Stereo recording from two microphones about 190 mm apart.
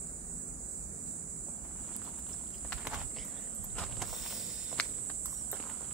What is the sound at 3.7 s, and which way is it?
Walk, centre (ahead or behind).